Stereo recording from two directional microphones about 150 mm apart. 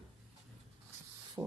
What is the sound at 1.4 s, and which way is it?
Spray, 15° right (ahead or behind).